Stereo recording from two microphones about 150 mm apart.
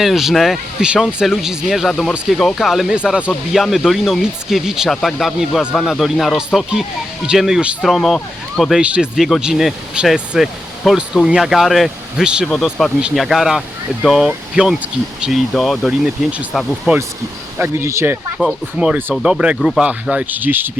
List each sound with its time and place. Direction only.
0.0 s speech: centre (ahead or behind)
17.6 s speech: 15° right (ahead or behind)
18.3 s speech: 5° right (ahead or behind)